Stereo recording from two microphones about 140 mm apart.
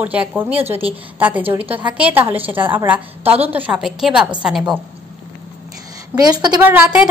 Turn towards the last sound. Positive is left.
turn(degrees=-15)  # may be behind; listen again after turning